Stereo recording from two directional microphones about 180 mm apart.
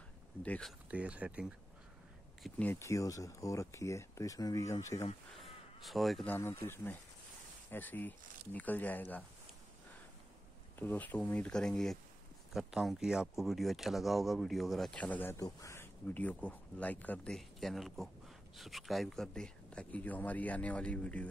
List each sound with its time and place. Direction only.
0.4 s speech: 5° left (ahead or behind)
2.4 s speech: 10° left (ahead or behind)
5.3 s speech: centre (ahead or behind)
6.3 s speech: 15° left (ahead or behind)
10.8 s speech: 10° left (ahead or behind)